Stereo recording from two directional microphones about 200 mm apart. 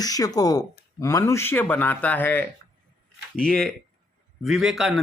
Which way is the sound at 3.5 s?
5° left (ahead or behind).